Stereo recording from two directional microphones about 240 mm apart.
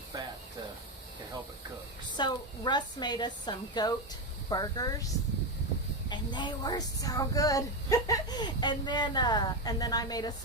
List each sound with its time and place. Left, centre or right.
2.1 s speech: centre